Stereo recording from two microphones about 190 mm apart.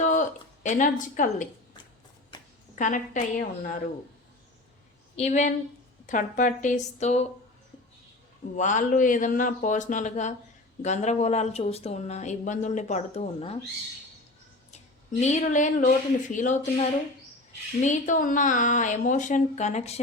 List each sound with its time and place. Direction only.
0.0 s speech: 40° left (ahead or behind)
2.3 s a sound: 20° left (ahead or behind)
2.7 s a woman's voice: 40° left (ahead or behind)
5.1 s speech: 40° left (ahead or behind)
8.5 s speech: 40° left (ahead or behind)
15.2 s speech: 40° left (ahead or behind)